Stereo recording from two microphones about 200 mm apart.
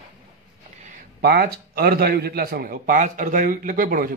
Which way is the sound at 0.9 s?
50° right (ahead or behind).